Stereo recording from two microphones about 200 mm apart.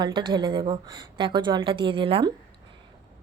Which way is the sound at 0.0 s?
25° right (ahead or behind).